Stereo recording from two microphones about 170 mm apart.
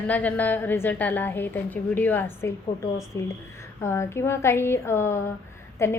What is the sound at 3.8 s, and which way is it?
A woman's voice, 15° left (ahead or behind).